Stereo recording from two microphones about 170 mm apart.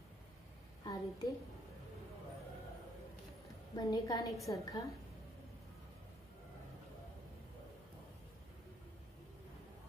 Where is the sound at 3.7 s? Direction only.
25° left (ahead or behind).